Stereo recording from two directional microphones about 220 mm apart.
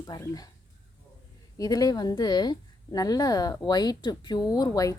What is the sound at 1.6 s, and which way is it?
Speech, 15° left (ahead or behind).